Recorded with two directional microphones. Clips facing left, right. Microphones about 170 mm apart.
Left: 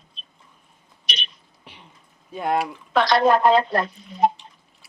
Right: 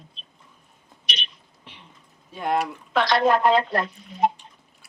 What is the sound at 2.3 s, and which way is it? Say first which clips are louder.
Speech: left 1 dB; 5° left (ahead or behind).